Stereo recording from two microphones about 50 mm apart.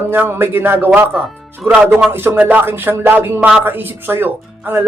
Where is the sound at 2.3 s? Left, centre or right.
Right.